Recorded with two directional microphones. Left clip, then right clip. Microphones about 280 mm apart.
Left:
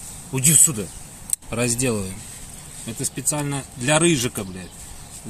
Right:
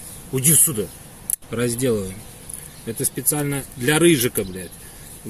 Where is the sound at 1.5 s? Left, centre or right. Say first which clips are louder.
Right 2 dB; left.